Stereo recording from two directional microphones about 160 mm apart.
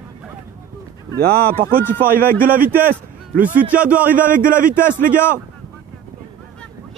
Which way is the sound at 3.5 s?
10° right (ahead or behind).